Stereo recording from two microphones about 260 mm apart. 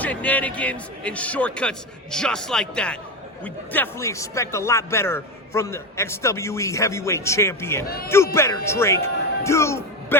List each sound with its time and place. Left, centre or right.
0.0 s a man's voice: centre
7.9 s speech: left
8.1 s a man's voice: centre